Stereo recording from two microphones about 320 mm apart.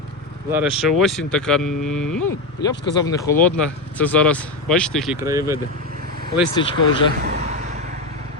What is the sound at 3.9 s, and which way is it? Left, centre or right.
Speech, centre.